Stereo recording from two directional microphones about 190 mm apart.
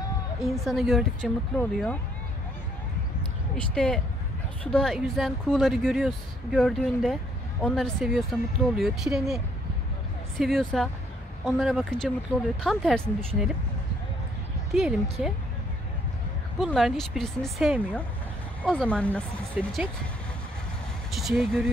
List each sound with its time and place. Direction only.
0.4 s speech: centre (ahead or behind)
3.5 s speech: 5° left (ahead or behind)
14.7 s speech: centre (ahead or behind)
16.5 s speech: centre (ahead or behind)
21.1 s speech: centre (ahead or behind)